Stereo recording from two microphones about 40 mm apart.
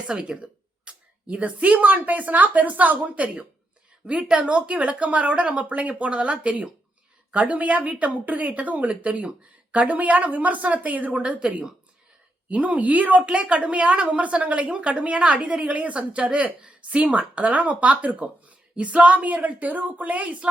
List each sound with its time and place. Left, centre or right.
0.1 s speech: right
0.4 s speech: right
4.0 s speech: right